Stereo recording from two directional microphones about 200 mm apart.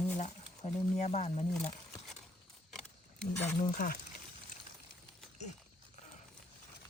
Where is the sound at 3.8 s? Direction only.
45° left (ahead or behind).